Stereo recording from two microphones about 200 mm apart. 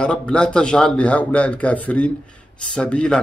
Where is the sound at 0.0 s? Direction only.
5° left (ahead or behind).